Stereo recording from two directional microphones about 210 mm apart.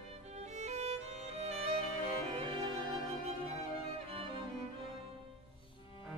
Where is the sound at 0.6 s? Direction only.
30° right (ahead or behind).